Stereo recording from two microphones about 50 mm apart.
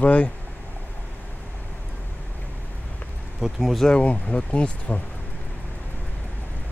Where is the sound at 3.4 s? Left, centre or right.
Centre.